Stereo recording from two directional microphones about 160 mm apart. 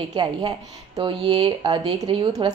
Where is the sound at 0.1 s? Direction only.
30° right (ahead or behind).